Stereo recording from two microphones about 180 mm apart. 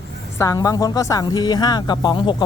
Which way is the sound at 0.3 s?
20° left (ahead or behind).